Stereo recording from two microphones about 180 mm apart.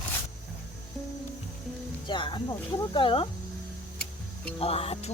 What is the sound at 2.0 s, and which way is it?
Speech, 25° left (ahead or behind).